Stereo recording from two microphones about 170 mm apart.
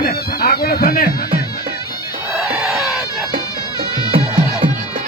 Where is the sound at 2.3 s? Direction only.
5° right (ahead or behind).